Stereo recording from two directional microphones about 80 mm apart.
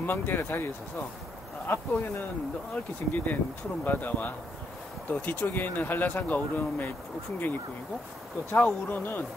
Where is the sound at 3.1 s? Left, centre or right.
Left.